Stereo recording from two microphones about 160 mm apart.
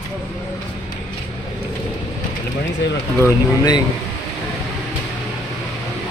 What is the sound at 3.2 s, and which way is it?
Speech, 25° left (ahead or behind).